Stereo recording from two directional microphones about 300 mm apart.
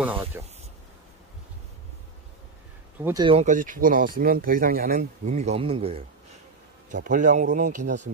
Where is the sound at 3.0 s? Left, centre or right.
Centre.